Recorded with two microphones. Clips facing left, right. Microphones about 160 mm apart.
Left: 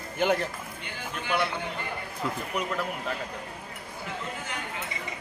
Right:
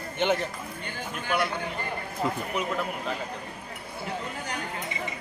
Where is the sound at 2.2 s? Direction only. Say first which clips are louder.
Right 4 dB; 35° right (ahead or behind).